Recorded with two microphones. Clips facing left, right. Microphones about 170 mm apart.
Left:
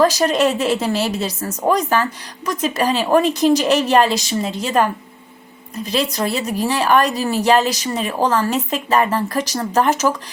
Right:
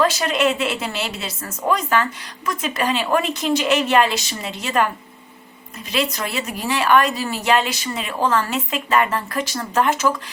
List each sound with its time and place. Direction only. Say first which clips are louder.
0.0 s speech: left 4 dB; 40° left (ahead or behind)